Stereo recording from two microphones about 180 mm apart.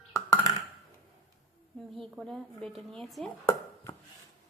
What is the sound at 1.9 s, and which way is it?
A woman's voice, centre (ahead or behind).